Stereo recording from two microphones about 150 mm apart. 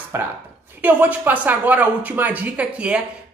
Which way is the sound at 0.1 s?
20° right (ahead or behind).